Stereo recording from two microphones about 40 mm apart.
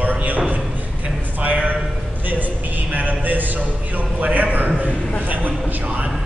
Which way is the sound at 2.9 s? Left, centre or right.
Right.